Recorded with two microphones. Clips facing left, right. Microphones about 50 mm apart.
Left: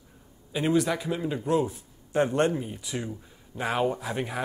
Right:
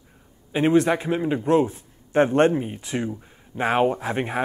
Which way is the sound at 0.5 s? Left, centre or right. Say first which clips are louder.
Right 6 dB; right.